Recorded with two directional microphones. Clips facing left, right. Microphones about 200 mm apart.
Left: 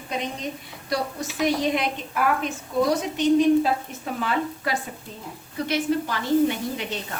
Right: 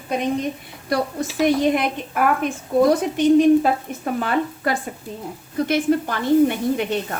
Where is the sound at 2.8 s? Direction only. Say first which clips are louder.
Right 5 dB; 55° right (ahead or behind).